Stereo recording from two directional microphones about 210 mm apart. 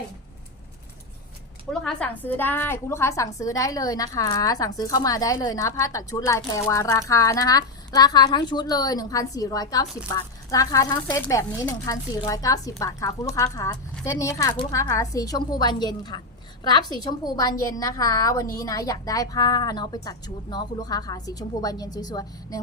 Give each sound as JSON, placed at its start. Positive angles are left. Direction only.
{"t": 1.7, "sound": "a woman's voice", "side_deg": 5}